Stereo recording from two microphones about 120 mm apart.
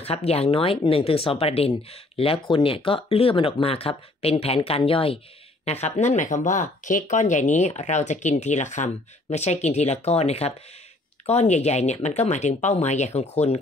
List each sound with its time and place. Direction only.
0.0 s speech: 60° left (ahead or behind)
5.7 s speech: 70° left (ahead or behind)